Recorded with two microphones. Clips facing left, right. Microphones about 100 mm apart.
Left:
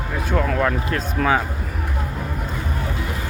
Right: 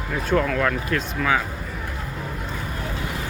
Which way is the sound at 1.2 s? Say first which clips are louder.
Left 4 dB; 50° left (ahead or behind).